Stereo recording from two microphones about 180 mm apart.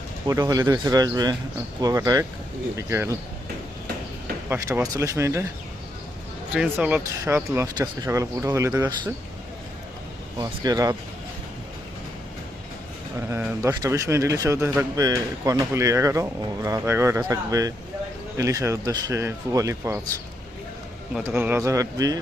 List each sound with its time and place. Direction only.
0.3 s speech: 20° right (ahead or behind)
4.4 s speech: 15° right (ahead or behind)
6.5 s speech: 5° right (ahead or behind)
10.4 s speech: 20° right (ahead or behind)
13.3 s speech: 15° right (ahead or behind)
21.2 s speech: 10° right (ahead or behind)